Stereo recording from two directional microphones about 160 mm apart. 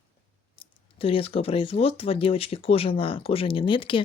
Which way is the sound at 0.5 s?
35° left (ahead or behind).